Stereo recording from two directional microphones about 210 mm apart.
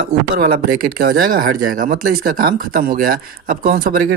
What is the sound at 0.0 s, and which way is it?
Speech, 40° right (ahead or behind).